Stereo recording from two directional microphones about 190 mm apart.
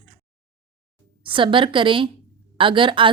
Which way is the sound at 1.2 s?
25° right (ahead or behind).